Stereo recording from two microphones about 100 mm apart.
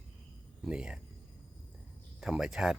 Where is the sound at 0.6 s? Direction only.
10° right (ahead or behind).